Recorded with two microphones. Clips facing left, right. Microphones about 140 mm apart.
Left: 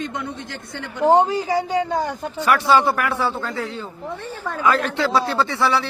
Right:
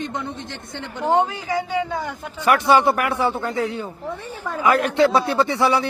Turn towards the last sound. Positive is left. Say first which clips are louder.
# right 2 dB
turn(degrees=-15)  # may be behind; listen again after turning